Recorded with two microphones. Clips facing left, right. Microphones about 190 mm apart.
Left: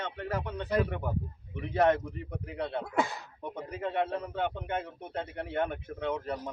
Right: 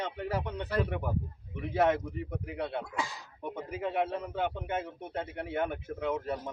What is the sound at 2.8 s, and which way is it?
Speech, 55° left (ahead or behind).